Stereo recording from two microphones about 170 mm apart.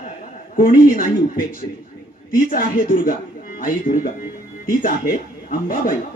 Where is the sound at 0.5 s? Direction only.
55° left (ahead or behind).